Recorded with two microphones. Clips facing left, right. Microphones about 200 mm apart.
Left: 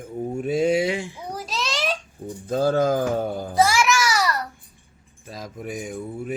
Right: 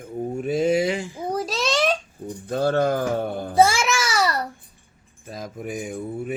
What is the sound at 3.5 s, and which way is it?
Babbling, 25° right (ahead or behind).